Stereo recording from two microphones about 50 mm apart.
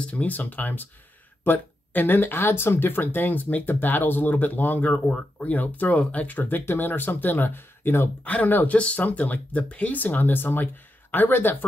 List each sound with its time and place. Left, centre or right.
0.0 s speech: left
6.6 s speech: left
8.2 s speech: left